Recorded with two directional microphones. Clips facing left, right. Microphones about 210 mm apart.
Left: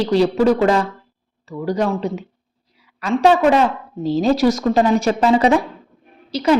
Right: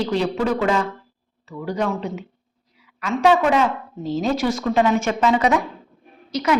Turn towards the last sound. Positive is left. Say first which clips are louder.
# left 4 dB
turn(degrees=30)  # may be behind; listen again after turning